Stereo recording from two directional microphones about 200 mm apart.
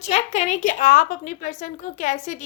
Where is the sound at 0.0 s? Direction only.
35° left (ahead or behind).